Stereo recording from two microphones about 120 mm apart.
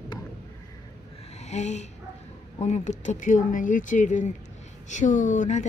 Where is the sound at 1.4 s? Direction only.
70° left (ahead or behind).